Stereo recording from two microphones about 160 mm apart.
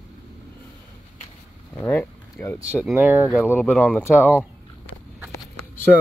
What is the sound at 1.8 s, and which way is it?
Speech, 10° left (ahead or behind).